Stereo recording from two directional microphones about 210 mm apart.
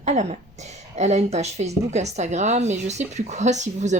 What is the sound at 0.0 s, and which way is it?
Speech, 30° right (ahead or behind).